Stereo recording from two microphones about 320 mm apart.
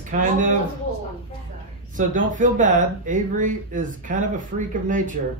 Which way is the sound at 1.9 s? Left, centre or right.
Right.